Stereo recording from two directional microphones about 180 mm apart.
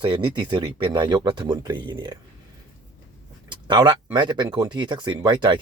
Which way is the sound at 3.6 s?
25° right (ahead or behind).